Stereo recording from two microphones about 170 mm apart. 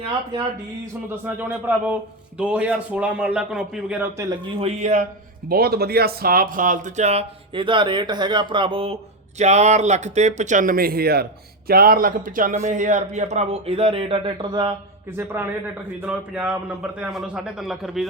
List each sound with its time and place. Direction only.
1.2 s a man's voice: 10° right (ahead or behind)
4.5 s speech: 35° right (ahead or behind)
5.5 s speech: 65° right (ahead or behind); by 14.7 s 25° right (ahead or behind)
15.1 s a man's voice: 15° right (ahead or behind)